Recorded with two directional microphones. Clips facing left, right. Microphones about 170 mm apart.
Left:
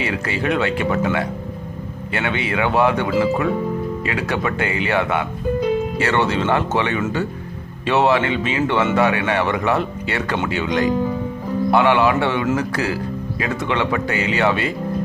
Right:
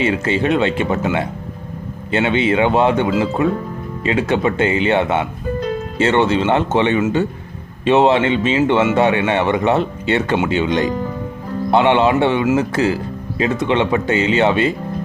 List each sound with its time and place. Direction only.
0.0 s speech: 25° right (ahead or behind)